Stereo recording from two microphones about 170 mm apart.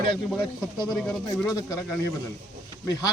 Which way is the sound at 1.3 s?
20° left (ahead or behind).